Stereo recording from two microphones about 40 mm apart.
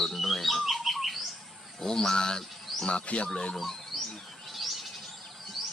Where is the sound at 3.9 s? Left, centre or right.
Centre.